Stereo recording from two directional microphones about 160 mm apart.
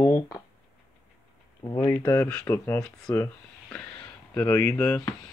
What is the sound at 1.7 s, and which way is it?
Speech, 15° left (ahead or behind).